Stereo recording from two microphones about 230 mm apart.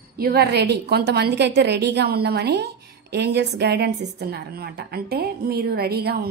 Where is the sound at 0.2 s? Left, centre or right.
Right.